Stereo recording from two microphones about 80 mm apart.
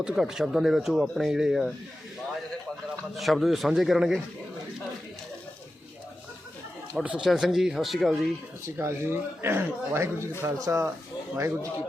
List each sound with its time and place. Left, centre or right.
0.0 s speech: centre
3.2 s speech: centre
7.2 s speech: centre
8.6 s speech: right